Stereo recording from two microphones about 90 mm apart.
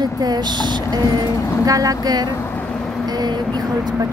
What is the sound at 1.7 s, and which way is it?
A woman's voice, 40° right (ahead or behind).